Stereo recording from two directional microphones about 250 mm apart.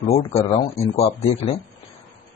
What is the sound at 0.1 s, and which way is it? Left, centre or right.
Speech, left.